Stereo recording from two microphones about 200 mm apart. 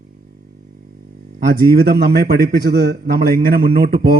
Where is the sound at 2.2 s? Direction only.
50° right (ahead or behind).